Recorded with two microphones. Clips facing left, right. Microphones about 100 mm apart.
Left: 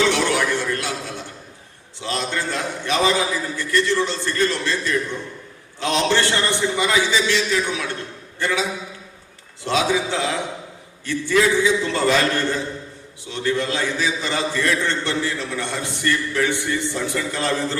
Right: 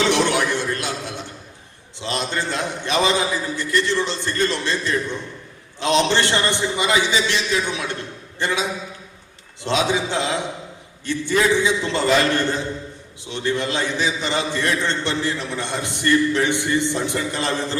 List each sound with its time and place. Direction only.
0.1 s a sound: 20° right (ahead or behind)
2.0 s a man's voice: 20° right (ahead or behind)
9.6 s a man's voice: 20° right (ahead or behind)